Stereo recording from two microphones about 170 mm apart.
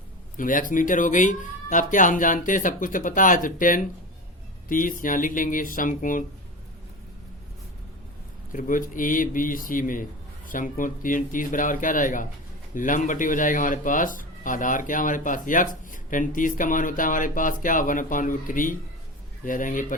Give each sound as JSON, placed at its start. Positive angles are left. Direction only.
{"t": 0.3, "sound": "speech", "side_deg": 50}
{"t": 8.5, "sound": "speech", "side_deg": 50}